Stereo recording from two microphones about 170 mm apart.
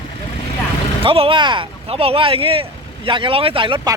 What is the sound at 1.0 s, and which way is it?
Speech, 35° right (ahead or behind).